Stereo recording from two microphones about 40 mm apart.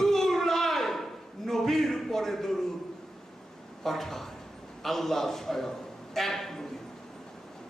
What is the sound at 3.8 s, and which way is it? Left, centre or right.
A man's voice, centre.